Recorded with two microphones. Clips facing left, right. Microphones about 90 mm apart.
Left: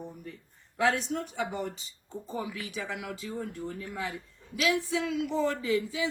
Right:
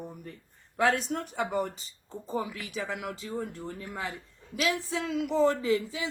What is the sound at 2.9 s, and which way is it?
Speech, 40° right (ahead or behind).